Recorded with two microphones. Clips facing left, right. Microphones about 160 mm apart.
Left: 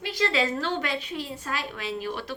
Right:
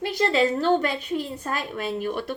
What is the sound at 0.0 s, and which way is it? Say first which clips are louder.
A woman's voice: right 5 dB; 45° right (ahead or behind).